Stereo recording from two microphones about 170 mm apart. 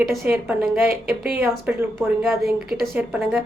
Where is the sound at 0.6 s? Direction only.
60° right (ahead or behind).